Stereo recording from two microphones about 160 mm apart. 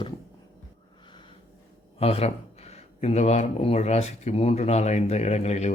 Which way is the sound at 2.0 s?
40° left (ahead or behind).